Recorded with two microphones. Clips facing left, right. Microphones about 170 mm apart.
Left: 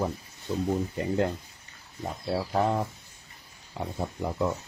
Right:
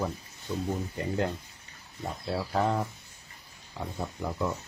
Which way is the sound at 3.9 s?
20° left (ahead or behind).